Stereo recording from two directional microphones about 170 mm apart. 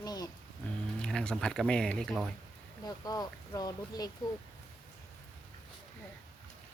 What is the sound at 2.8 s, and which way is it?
Speech, 20° left (ahead or behind).